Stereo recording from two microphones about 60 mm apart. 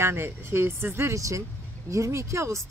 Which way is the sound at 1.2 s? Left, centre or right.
Right.